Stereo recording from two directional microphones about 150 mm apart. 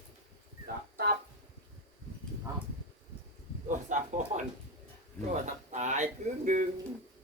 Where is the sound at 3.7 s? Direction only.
55° right (ahead or behind).